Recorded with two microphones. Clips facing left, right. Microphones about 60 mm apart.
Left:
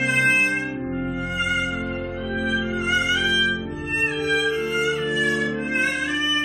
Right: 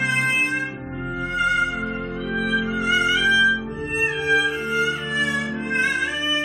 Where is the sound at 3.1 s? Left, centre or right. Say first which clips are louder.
Right 4 dB; right.